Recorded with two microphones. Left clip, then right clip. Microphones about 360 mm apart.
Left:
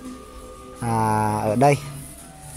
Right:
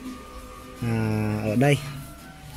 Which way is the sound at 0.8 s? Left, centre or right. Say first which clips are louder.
Left 8 dB; left.